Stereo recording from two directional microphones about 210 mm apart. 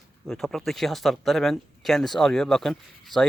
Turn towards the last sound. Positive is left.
turn(degrees=0)  # may be behind; listen again after turning